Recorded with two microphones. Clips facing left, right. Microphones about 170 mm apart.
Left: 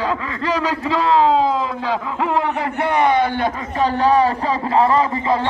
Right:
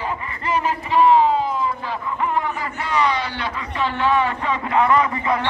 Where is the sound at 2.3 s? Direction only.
55° left (ahead or behind).